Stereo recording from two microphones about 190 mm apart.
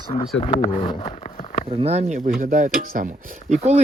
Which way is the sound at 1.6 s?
30° right (ahead or behind).